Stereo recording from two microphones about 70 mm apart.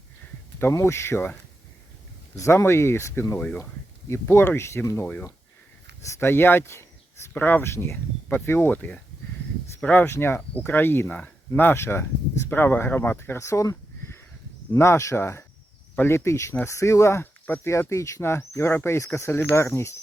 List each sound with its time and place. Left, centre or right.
0.7 s speech: left
2.3 s speech: left
6.1 s speech: left
7.3 s speech: left
7.6 s speech: left
14.8 s speech: left
17.4 s speech: left
17.7 s speech: left